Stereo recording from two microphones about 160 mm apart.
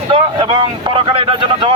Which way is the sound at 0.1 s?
30° right (ahead or behind).